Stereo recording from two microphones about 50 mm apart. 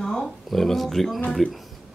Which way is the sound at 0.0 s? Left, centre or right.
Centre.